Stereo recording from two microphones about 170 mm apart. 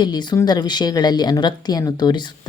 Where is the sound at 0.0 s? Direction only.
25° left (ahead or behind).